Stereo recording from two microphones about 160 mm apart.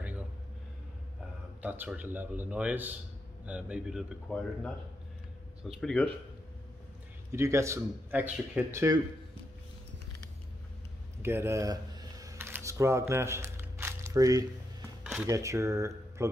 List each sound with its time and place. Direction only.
1.6 s speech: 10° right (ahead or behind)
5.8 s speech: 5° left (ahead or behind)
7.3 s speech: 20° right (ahead or behind)
11.2 s a sound: 15° right (ahead or behind)
15.2 s speech: 20° right (ahead or behind)